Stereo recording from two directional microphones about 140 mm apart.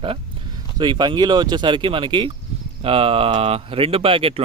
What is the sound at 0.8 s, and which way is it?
Speech, 30° right (ahead or behind).